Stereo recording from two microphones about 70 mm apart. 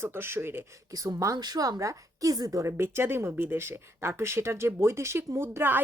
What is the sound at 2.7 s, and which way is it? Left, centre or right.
Speech, right.